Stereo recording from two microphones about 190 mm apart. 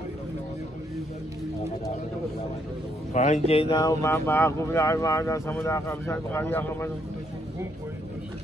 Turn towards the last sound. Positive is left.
turn(degrees=10)  # may be behind; listen again after turning